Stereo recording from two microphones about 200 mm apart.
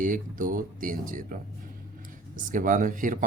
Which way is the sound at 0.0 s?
40° right (ahead or behind).